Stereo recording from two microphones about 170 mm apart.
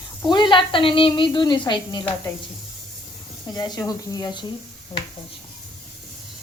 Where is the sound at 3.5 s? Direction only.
25° left (ahead or behind).